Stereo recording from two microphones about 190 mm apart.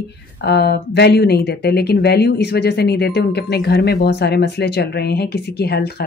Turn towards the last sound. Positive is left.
turn(degrees=55)  # may be behind; listen again after turning